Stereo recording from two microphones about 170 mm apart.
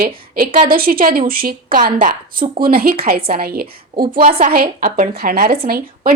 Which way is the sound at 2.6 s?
60° right (ahead or behind).